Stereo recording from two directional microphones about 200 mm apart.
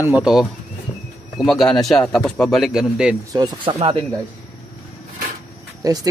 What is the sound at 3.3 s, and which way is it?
Speech, 20° right (ahead or behind).